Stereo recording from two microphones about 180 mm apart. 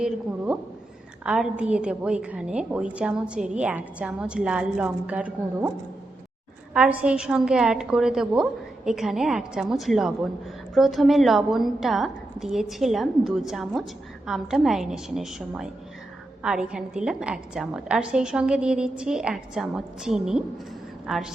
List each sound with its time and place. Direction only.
0.0 s a woman's voice: 5° right (ahead or behind)
6.7 s a woman's voice: 5° right (ahead or behind)